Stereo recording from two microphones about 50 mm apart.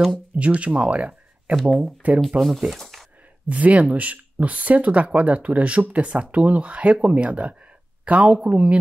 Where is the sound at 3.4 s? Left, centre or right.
Right.